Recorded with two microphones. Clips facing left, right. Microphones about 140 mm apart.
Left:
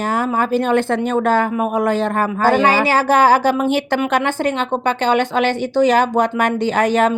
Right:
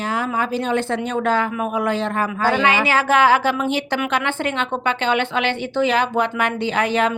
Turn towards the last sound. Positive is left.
turn(degrees=45)  # may be behind; listen again after turning